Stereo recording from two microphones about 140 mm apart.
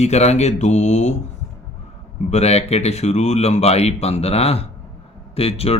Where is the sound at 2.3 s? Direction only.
50° left (ahead or behind).